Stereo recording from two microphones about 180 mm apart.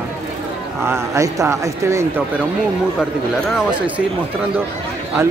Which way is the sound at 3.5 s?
5° right (ahead or behind).